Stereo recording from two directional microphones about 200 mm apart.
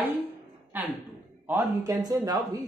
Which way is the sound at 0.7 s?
10° right (ahead or behind).